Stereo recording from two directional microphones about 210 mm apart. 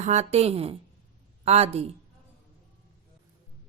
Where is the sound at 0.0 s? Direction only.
30° right (ahead or behind).